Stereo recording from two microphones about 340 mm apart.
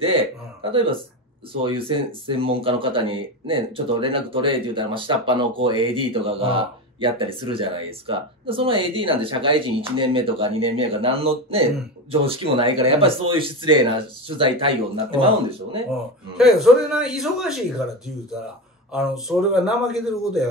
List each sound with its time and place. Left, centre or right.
0.0 s a man's voice: centre
16.3 s a man's voice: centre
18.9 s a man's voice: centre